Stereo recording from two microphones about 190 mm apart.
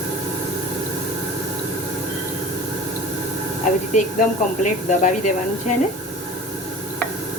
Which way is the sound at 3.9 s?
40° left (ahead or behind).